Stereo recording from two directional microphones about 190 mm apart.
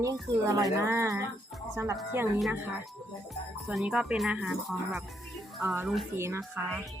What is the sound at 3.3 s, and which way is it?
Speech, 5° right (ahead or behind).